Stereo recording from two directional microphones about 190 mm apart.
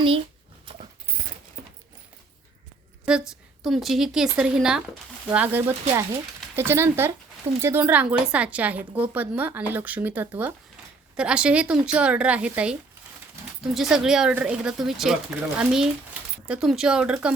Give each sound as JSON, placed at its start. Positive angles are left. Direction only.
{"t": 3.1, "sound": "speech", "side_deg": -5}
{"t": 13.7, "sound": "speech", "side_deg": 0}